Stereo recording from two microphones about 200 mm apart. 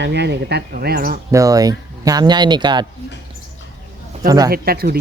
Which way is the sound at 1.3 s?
15° right (ahead or behind).